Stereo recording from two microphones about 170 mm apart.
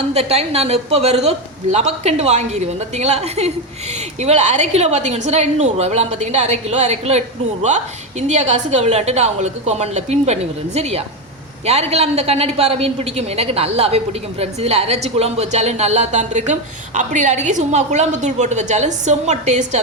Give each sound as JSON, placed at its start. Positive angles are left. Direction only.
{"t": 0.1, "sound": "a woman's voice", "side_deg": -35}